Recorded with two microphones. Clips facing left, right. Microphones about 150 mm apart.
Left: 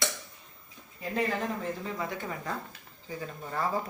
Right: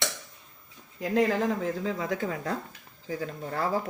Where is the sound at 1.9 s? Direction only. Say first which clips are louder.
Right 5 dB; 90° right.